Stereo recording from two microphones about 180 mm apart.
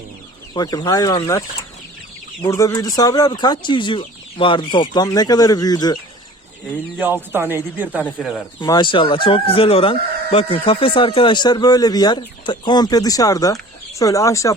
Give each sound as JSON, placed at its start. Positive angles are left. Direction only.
{"t": 0.5, "sound": "speech", "side_deg": 20}
{"t": 6.9, "sound": "speech", "side_deg": -10}
{"t": 8.6, "sound": "speech", "side_deg": 25}